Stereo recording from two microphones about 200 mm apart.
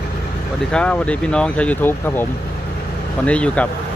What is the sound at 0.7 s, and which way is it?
Speech, 5° left (ahead or behind).